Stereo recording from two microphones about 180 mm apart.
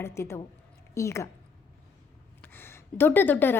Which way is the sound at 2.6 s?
10° left (ahead or behind).